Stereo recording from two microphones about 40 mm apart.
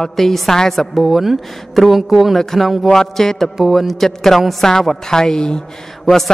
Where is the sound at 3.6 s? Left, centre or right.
Centre.